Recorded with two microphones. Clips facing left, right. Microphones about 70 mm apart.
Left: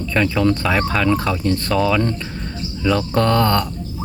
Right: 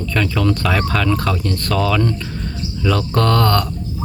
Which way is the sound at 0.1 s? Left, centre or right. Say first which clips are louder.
Left 2 dB; left.